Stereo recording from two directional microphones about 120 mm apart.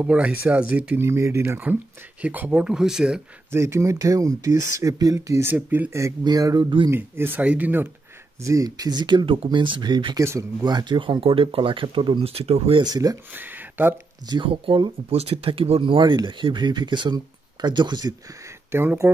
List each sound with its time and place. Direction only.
0.0 s speech: 10° right (ahead or behind)
3.5 s speech: 25° right (ahead or behind)
6.2 s speech: 35° right (ahead or behind)
6.9 s speech: 20° right (ahead or behind)
8.5 s speech: 30° right (ahead or behind); by 12.8 s 55° right (ahead or behind)
12.8 s speech: 30° right (ahead or behind)
13.3 s speech: 15° right (ahead or behind)
14.3 s speech: 45° right (ahead or behind)
18.7 s speech: 20° right (ahead or behind)